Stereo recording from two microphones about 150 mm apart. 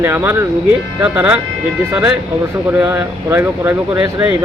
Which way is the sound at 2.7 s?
15° right (ahead or behind).